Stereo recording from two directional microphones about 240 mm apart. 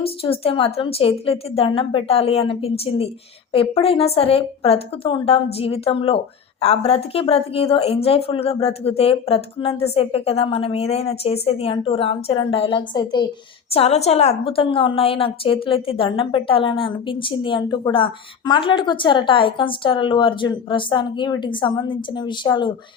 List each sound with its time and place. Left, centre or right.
0.0 s a woman's voice: left